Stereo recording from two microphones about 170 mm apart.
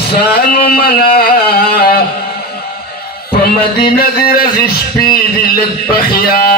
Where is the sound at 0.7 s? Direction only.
65° left (ahead or behind).